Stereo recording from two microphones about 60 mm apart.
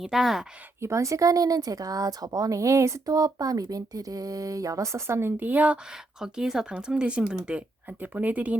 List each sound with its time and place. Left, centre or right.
0.0 s speech: centre
0.8 s speech: right
5.4 s speech: right
6.1 s speech: centre